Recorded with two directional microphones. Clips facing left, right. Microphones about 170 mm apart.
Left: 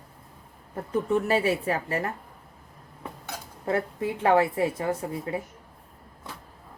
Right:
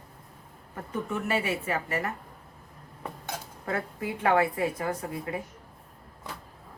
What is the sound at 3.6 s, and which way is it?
A woman's voice, 25° left (ahead or behind).